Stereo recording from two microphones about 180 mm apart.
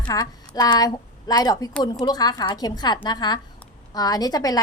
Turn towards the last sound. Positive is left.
turn(degrees=20)  # may be behind; listen again after turning